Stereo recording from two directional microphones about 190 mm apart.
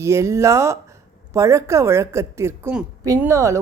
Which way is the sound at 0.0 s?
15° right (ahead or behind).